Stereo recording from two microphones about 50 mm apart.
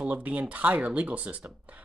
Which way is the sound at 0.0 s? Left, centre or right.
Right.